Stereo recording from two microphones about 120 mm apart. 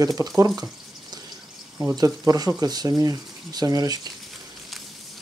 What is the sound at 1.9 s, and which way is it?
Speech, 30° right (ahead or behind).